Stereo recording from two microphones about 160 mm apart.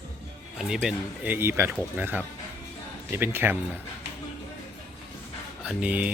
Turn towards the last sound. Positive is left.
turn(degrees=-10)  # may be behind; listen again after turning